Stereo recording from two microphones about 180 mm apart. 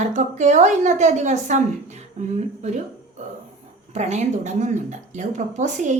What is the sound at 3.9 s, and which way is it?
Speech, 40° right (ahead or behind).